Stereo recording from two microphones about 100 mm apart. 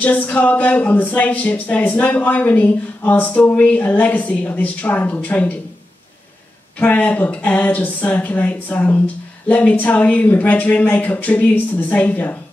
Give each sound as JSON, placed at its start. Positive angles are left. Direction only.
{"t": 0.0, "sound": "speech", "side_deg": 15}
{"t": 6.8, "sound": "speech", "side_deg": 15}